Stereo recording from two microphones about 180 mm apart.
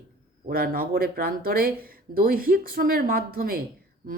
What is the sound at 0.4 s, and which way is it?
Speech, 55° right (ahead or behind).